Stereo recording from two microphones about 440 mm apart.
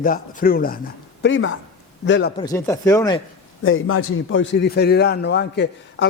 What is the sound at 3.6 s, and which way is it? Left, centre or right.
A man's voice, left.